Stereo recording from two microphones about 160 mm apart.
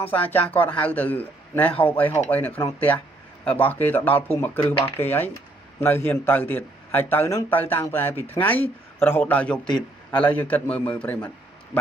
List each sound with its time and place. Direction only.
0.1 s speech: 10° left (ahead or behind)
9.6 s a man's voice: 25° left (ahead or behind)
10.2 s speech: 10° left (ahead or behind)